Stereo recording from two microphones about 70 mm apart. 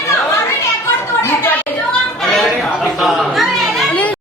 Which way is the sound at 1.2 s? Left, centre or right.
Left.